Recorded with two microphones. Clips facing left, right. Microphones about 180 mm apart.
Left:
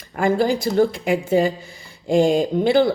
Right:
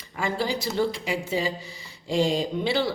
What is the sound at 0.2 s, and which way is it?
Speech, 50° left (ahead or behind).